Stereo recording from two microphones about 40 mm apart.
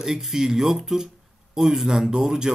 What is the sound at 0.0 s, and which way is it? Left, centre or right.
Speech, centre.